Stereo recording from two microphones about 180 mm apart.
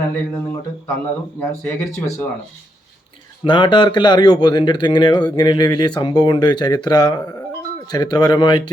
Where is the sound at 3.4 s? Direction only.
25° left (ahead or behind).